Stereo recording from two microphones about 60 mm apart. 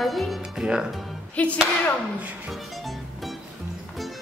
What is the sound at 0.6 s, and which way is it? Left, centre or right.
Speech, centre.